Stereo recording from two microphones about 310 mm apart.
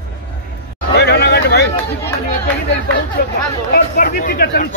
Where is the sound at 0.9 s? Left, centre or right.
Left.